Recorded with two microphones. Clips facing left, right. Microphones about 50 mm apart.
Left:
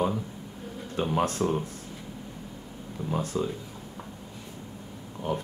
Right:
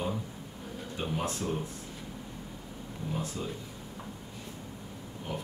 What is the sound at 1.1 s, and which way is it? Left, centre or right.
Speech, left.